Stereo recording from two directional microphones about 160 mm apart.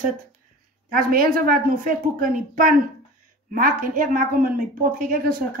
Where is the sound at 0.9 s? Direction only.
65° right (ahead or behind).